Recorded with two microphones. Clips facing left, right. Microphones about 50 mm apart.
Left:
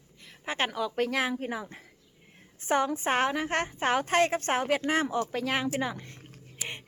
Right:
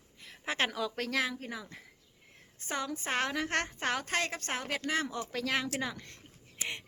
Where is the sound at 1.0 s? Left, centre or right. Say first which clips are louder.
Left 5 dB; centre.